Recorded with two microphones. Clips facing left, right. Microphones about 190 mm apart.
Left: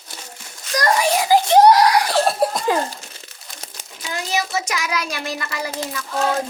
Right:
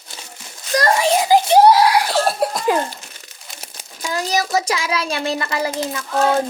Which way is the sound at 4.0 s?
40° right (ahead or behind).